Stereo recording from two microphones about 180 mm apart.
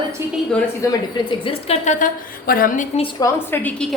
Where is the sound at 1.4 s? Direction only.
35° left (ahead or behind).